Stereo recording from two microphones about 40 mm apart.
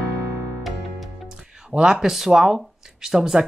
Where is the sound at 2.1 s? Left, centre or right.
Centre.